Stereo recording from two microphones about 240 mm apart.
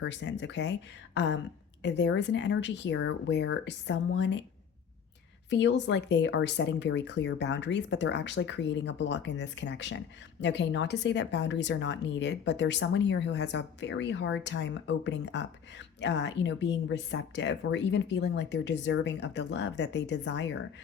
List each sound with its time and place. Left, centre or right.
0.0 s a woman's voice: left
5.5 s a woman's voice: left